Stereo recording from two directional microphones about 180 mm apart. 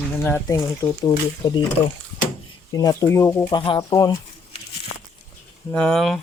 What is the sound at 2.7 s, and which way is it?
Speech, 20° left (ahead or behind).